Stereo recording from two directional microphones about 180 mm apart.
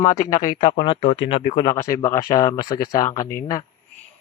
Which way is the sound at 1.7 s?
15° left (ahead or behind).